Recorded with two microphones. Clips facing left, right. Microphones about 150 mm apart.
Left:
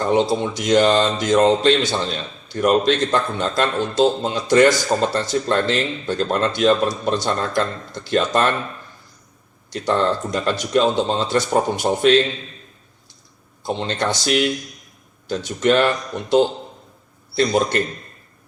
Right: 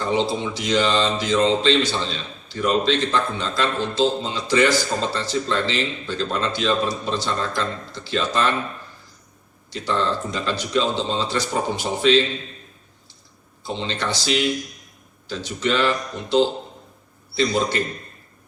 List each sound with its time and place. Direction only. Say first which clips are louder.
0.1 s speech: left 4 dB; 50° left (ahead or behind)
9.7 s speech: left 4 dB; 50° left (ahead or behind)
13.7 s speech: left 4 dB; 50° left (ahead or behind)
17.3 s speech: left 3 dB; 55° left (ahead or behind)